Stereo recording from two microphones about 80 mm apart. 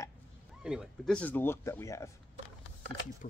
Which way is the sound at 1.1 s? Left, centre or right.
Centre.